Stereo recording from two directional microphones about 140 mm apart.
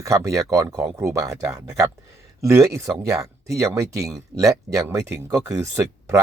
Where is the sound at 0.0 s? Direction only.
25° right (ahead or behind).